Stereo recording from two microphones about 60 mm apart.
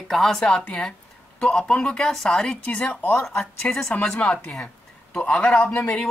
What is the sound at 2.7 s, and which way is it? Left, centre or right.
Speech, left.